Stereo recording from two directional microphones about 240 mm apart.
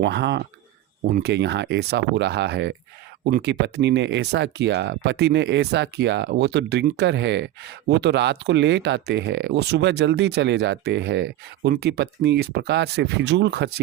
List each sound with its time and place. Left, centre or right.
0.0 s speech: right